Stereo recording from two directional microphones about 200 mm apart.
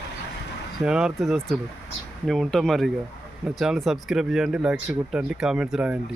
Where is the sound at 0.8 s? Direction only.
5° right (ahead or behind).